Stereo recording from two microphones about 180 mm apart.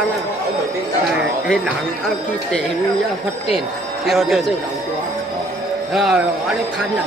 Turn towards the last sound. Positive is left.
turn(degrees=0)  # may be behind; listen again after turning